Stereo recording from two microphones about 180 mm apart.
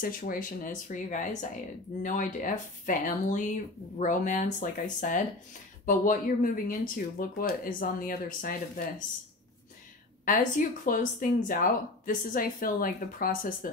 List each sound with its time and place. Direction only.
0.0 s speech: 50° left (ahead or behind)
10.2 s speech: 45° left (ahead or behind)